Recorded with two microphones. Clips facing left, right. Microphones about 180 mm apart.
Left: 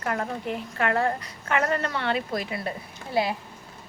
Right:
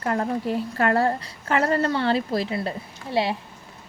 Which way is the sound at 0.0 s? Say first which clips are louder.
Right 4 dB; 30° right (ahead or behind).